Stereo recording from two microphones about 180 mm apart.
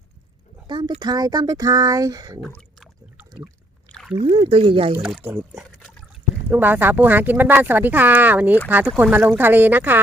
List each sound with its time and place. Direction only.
0.7 s speech: 25° right (ahead or behind)
2.4 s a sound: 5° left (ahead or behind)
3.9 s rowboat: centre (ahead or behind)
4.2 s speech: 30° right (ahead or behind)
5.0 s speech: 5° right (ahead or behind)